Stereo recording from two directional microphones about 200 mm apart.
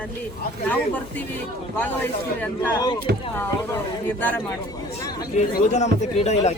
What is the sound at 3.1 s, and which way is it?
Speech, 55° right (ahead or behind).